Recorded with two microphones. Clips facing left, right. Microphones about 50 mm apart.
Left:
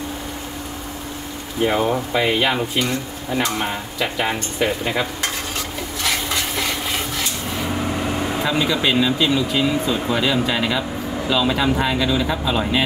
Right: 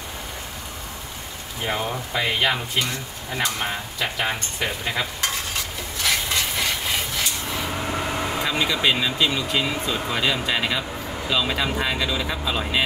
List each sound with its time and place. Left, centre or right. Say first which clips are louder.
1.6 s speech: left 8 dB; centre
8.5 s speech: left 2 dB; centre